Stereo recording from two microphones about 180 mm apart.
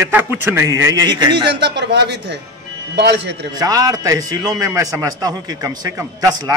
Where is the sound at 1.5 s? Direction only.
65° right (ahead or behind).